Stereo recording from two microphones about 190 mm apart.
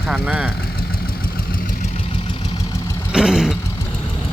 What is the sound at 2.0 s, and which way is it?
Vehicle, 30° left (ahead or behind).